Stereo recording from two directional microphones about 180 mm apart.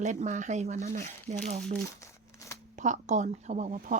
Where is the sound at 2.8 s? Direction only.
45° right (ahead or behind).